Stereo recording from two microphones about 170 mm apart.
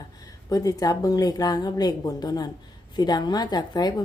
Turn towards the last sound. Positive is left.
turn(degrees=25)  # may be behind; listen again after turning